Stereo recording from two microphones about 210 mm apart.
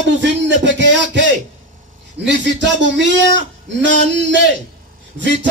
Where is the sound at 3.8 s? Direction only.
60° right (ahead or behind).